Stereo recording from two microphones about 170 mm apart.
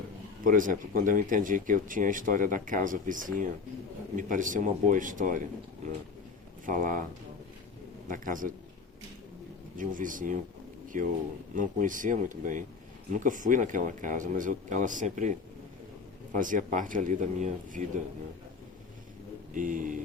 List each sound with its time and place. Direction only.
0.4 s speech: 50° right (ahead or behind)
6.7 s speech: 55° right (ahead or behind)
8.0 s speech: 50° right (ahead or behind)
9.7 s speech: 50° right (ahead or behind)
11.5 s speech: 50° right (ahead or behind)
19.5 s speech: 50° right (ahead or behind)